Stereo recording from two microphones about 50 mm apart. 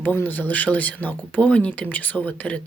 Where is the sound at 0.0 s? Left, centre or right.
Left.